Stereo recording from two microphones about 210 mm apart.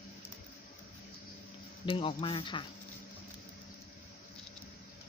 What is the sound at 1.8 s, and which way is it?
Speech, 25° left (ahead or behind).